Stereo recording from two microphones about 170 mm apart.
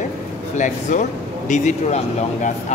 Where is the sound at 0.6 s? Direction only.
45° left (ahead or behind).